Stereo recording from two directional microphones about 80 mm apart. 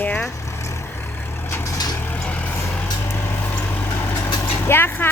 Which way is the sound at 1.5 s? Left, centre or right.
Left.